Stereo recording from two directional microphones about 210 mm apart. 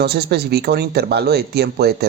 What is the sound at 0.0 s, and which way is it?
Speech, 50° right (ahead or behind).